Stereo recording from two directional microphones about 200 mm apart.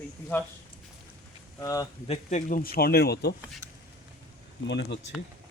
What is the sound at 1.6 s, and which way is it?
Speech, 15° left (ahead or behind).